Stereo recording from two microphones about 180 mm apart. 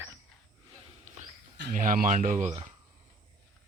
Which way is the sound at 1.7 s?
50° right (ahead or behind).